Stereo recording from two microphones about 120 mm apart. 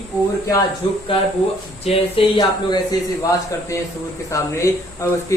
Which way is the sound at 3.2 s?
25° left (ahead or behind).